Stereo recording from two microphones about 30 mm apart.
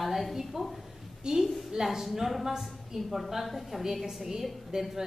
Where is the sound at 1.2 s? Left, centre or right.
Centre.